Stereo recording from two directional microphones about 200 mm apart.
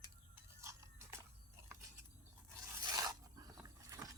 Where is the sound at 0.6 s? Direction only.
15° right (ahead or behind).